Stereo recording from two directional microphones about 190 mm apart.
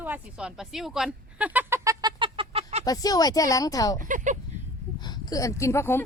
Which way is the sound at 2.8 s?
20° left (ahead or behind).